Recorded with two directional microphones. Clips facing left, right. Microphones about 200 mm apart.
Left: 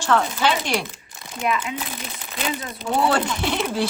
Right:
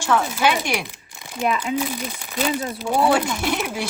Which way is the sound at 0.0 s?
10° right (ahead or behind).